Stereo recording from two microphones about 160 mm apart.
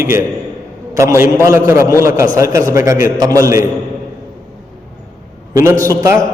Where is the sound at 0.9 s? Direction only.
15° right (ahead or behind).